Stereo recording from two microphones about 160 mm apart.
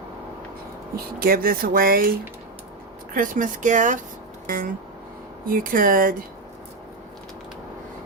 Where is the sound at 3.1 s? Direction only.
55° right (ahead or behind).